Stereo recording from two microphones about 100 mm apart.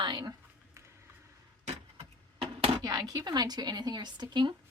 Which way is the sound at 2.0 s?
75° right (ahead or behind).